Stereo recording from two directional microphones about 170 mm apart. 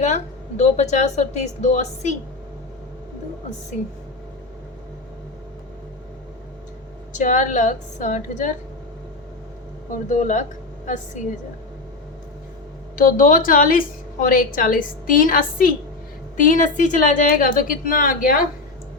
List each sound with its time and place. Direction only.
0.0 s a woman's voice: 45° left (ahead or behind)
3.7 s a woman's voice: 45° left (ahead or behind)
7.1 s a woman's voice: 50° left (ahead or behind)
10.1 s a woman's voice: 45° left (ahead or behind)
13.0 s a woman's voice: 50° left (ahead or behind)